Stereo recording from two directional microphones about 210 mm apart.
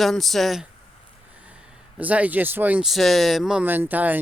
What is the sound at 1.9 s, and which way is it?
Speech, 5° right (ahead or behind).